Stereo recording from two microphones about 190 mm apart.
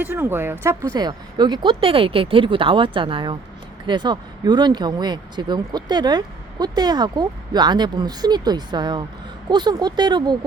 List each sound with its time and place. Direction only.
0.0 s speech: 10° right (ahead or behind)